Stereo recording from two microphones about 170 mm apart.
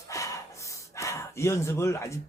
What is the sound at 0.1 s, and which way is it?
Speech, 20° left (ahead or behind).